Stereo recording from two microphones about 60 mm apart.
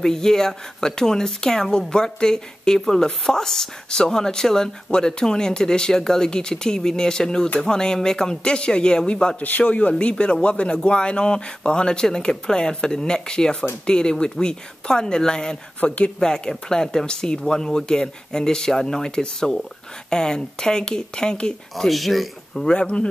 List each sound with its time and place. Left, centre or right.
0.0 s a woman's voice: centre
9.4 s a woman's voice: left
21.8 s a woman's voice: centre